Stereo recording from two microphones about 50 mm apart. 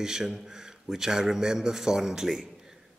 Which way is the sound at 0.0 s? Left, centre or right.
Centre.